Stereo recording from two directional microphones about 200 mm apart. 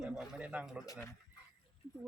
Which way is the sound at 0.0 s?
Centre (ahead or behind).